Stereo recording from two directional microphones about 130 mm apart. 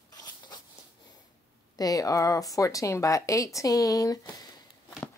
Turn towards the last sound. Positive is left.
turn(degrees=25)  # may be behind; listen again after turning